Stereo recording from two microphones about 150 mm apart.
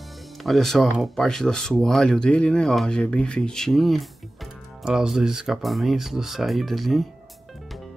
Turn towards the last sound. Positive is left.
turn(degrees=0)  # may be behind; listen again after turning